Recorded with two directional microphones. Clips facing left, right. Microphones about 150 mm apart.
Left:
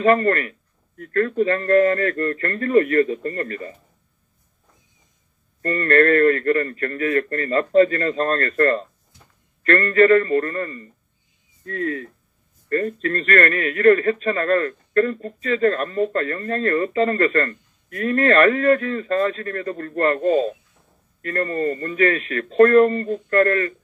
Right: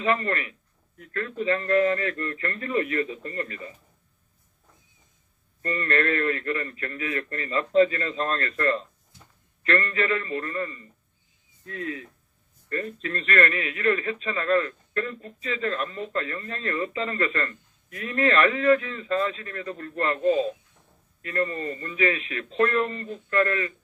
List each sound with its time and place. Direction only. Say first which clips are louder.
0.0 s a man's voice: left 9 dB; 50° left (ahead or behind)
5.6 s a man's voice: left 9 dB; 50° left (ahead or behind)